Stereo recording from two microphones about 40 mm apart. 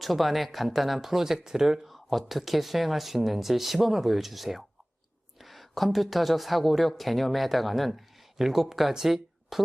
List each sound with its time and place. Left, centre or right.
0.0 s speech: centre